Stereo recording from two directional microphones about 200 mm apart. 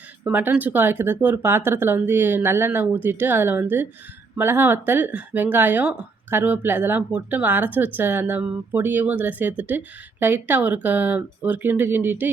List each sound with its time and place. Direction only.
0.3 s speech: 10° right (ahead or behind)